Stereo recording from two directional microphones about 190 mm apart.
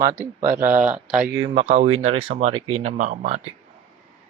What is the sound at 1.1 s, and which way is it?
Speech, 5° right (ahead or behind).